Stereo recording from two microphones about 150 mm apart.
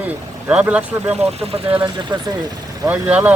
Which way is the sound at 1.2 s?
40° right (ahead or behind).